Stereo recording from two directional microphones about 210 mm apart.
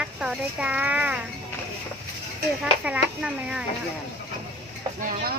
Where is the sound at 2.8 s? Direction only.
5° right (ahead or behind).